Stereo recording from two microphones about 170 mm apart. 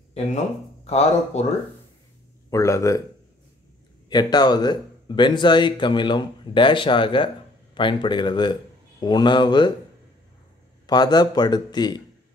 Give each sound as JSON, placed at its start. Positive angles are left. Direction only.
{"t": 0.8, "sound": "speech", "side_deg": 40}
{"t": 2.5, "sound": "a man's voice", "side_deg": 15}
{"t": 4.1, "sound": "speech", "side_deg": 25}
{"t": 10.9, "sound": "speech", "side_deg": 25}